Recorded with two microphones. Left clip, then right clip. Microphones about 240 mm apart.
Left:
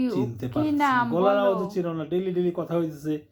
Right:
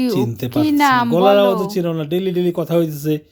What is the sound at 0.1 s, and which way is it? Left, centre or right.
Speech, right.